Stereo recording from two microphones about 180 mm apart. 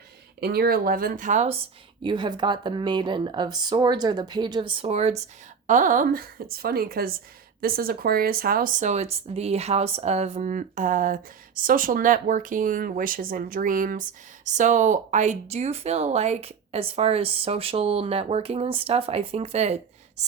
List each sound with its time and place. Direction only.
0.3 s speech: 60° right (ahead or behind); by 1.5 s 40° right (ahead or behind)
2.0 s a woman's voice: 25° right (ahead or behind)